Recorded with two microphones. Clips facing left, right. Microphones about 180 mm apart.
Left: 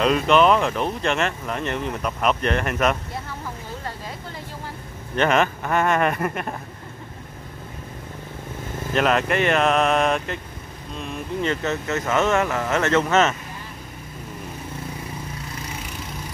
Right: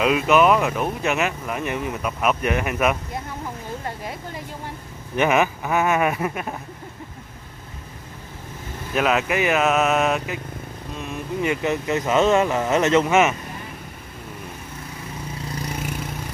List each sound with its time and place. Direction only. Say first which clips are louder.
0.0 s speech: even; 5° right (ahead or behind)
5.1 s speech: right 1 dB; 10° right (ahead or behind)
8.9 s speech: even; 5° right (ahead or behind)